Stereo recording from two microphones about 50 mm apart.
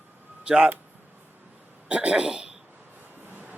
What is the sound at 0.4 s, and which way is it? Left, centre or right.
Speech, centre.